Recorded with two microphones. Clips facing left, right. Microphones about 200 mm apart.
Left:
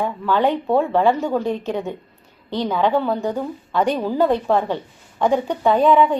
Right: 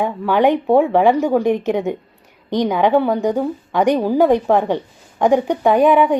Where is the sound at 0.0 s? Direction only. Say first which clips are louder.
Right 4 dB; 15° right (ahead or behind).